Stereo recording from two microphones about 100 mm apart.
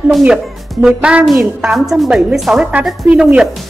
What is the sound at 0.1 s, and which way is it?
A woman's voice, 10° right (ahead or behind).